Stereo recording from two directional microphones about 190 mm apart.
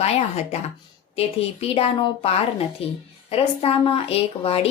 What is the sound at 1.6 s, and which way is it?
A woman's voice, 30° left (ahead or behind).